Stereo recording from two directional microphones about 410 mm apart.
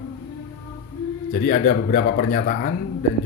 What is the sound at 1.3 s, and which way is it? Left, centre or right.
Speech, centre.